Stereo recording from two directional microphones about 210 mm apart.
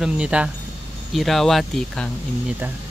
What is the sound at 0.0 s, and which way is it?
Speech, 5° right (ahead or behind).